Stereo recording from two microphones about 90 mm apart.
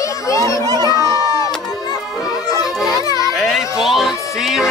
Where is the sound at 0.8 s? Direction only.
40° left (ahead or behind).